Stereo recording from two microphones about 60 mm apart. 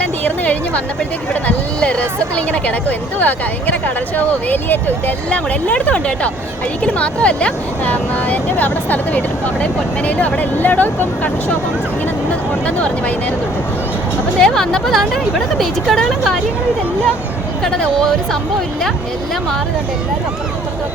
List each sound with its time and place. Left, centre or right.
0.3 s speech: left
12.6 s speech: left
14.3 s speech: centre
17.6 s speech: centre